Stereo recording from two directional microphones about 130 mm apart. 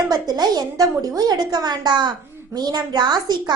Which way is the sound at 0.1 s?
30° right (ahead or behind).